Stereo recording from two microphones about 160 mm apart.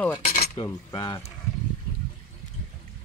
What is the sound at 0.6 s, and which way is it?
Speech, 25° left (ahead or behind).